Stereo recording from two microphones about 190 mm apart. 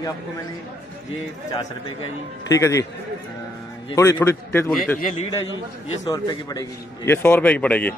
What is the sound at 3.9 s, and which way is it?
Speech, 15° left (ahead or behind).